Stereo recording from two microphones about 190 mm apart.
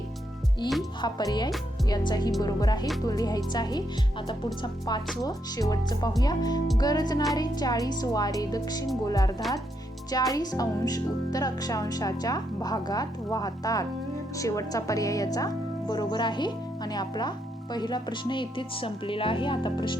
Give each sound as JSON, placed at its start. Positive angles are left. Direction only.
{"t": 1.0, "sound": "speech", "side_deg": 20}